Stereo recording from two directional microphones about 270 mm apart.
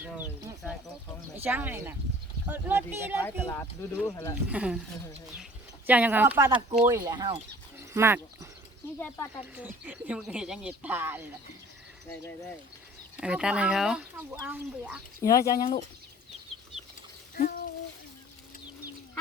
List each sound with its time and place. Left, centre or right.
1.4 s speech: centre
3.2 s speech: centre
4.4 s speech: centre
9.0 s speech: centre
9.4 s speech: centre
13.1 s speech: centre
15.2 s speech: centre
17.3 s speech: left